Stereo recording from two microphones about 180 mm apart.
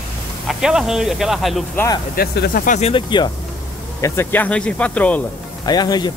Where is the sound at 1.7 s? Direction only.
20° left (ahead or behind).